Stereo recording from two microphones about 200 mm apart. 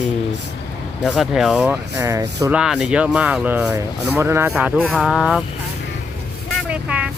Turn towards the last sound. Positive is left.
turn(degrees=-5)  # may be behind; listen again after turning